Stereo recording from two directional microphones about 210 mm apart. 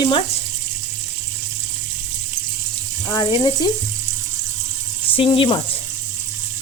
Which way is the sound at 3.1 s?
20° left (ahead or behind).